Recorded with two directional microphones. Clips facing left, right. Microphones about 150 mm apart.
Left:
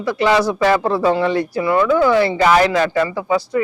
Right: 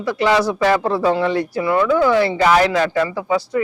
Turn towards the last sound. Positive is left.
turn(degrees=15)  # may be behind; listen again after turning